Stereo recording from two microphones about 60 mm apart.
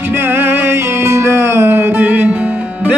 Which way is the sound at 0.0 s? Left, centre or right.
Right.